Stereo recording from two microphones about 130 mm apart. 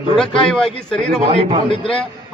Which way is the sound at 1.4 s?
50° right (ahead or behind).